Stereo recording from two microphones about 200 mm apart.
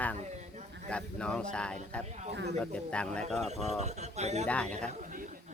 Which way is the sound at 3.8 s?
35° right (ahead or behind).